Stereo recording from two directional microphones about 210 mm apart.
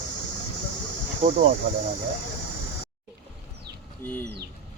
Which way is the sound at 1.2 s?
30° right (ahead or behind).